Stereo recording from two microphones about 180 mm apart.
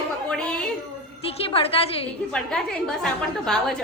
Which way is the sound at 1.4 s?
30° left (ahead or behind).